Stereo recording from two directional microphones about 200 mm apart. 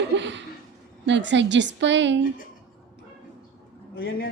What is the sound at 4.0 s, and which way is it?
Speech, 50° left (ahead or behind).